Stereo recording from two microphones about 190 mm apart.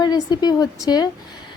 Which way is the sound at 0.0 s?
20° left (ahead or behind).